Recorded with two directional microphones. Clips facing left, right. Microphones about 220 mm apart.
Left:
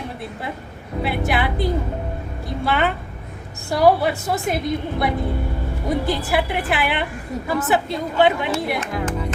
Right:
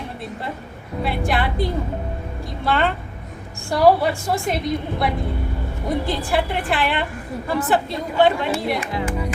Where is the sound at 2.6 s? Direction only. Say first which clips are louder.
Right 1 dB; 5° left (ahead or behind).